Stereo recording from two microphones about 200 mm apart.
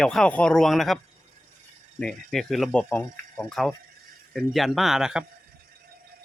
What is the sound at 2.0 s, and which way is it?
Speech, centre (ahead or behind).